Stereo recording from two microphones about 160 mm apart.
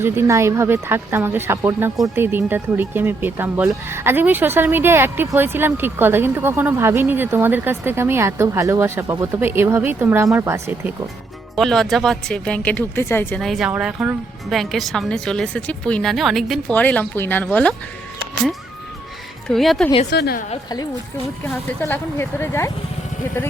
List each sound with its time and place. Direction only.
0.0 s speech: 15° right (ahead or behind)
11.5 s speech: centre (ahead or behind)
13.4 s speech: centre (ahead or behind)
19.5 s speech: centre (ahead or behind)
20.1 s a woman's voice: 85° left
21.8 s speech: 15° left (ahead or behind)